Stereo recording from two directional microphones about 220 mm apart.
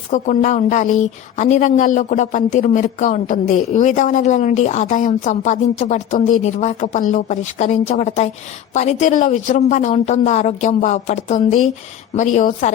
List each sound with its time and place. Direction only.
0.1 s speech: 35° left (ahead or behind)